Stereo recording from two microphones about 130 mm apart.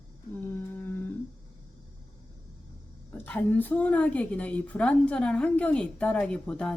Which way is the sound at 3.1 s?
15° left (ahead or behind).